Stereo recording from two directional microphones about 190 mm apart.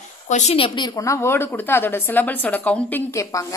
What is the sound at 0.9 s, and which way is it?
A woman's voice, 15° left (ahead or behind).